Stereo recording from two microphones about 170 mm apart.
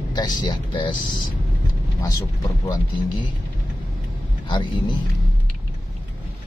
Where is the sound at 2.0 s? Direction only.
20° left (ahead or behind).